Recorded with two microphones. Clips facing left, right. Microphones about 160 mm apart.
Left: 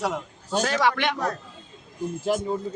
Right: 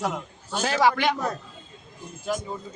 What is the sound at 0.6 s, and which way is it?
Speech, 5° right (ahead or behind).